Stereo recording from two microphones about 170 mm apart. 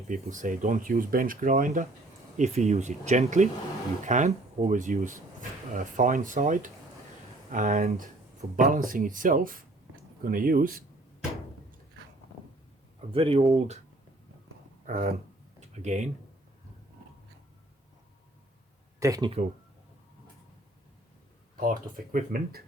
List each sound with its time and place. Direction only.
0.1 s speech: 50° right (ahead or behind)
13.1 s speech: 35° right (ahead or behind)
14.8 s speech: 50° right (ahead or behind)
18.9 s speech: 20° right (ahead or behind)
21.6 s speech: 55° right (ahead or behind)